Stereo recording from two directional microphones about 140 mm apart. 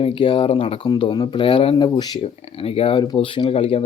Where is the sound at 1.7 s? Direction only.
30° left (ahead or behind).